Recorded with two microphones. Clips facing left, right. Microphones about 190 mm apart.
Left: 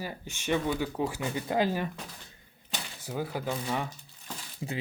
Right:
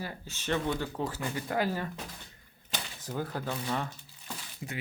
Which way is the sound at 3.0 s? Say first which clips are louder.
Left 2 dB; 10° left (ahead or behind).